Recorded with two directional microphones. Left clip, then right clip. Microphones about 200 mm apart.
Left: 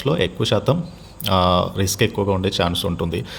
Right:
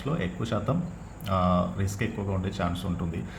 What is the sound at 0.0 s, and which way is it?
Speech, 45° left (ahead or behind).